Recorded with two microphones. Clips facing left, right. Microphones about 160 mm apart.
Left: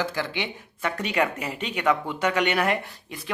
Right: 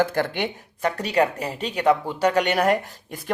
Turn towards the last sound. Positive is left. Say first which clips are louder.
# right 1 dB
turn(degrees=-45)  # may be behind; listen again after turning